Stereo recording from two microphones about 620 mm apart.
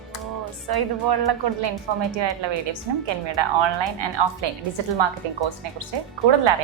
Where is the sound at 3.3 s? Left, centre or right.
Right.